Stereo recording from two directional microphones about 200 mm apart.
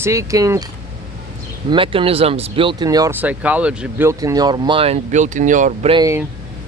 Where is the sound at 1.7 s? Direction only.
25° right (ahead or behind).